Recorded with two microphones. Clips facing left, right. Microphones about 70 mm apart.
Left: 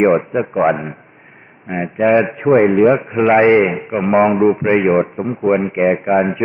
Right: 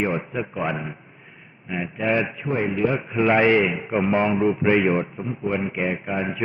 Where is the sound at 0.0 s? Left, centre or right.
Left.